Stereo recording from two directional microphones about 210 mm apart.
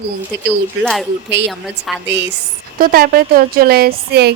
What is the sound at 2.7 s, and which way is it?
Speech, 45° right (ahead or behind).